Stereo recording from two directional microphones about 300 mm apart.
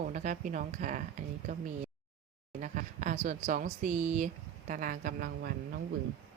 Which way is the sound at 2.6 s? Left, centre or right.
Right.